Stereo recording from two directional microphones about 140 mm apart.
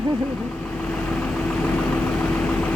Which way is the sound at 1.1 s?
5° left (ahead or behind).